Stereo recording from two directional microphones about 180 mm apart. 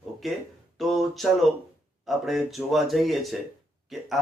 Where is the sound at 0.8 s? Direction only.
Centre (ahead or behind).